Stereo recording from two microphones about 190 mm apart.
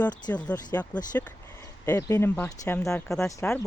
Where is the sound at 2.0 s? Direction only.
20° left (ahead or behind); by 3.6 s 5° left (ahead or behind).